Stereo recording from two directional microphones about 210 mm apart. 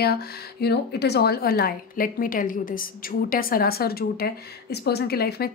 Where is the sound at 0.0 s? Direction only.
50° left (ahead or behind).